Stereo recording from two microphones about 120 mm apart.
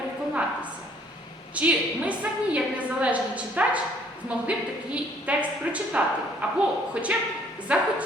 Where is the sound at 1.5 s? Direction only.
10° right (ahead or behind).